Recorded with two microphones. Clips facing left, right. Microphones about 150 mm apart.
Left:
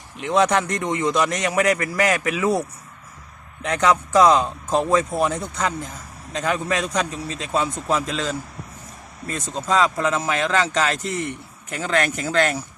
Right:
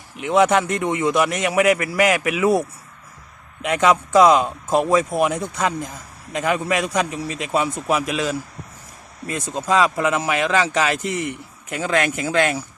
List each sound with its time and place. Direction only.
0.2 s a man's voice: 15° right (ahead or behind)